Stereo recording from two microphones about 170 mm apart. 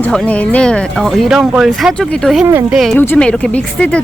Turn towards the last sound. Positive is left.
turn(degrees=5)  # may be behind; listen again after turning